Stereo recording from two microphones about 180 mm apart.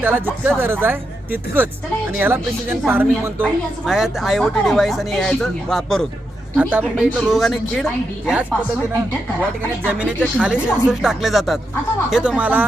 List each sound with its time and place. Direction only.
0.0 s a woman's voice: 10° right (ahead or behind)
9.8 s a woman's voice: 10° right (ahead or behind)